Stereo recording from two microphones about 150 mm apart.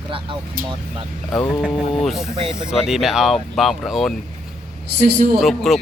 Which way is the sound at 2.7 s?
5° right (ahead or behind).